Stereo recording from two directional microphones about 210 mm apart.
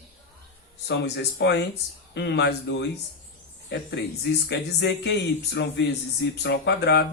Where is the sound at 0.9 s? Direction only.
55° left (ahead or behind).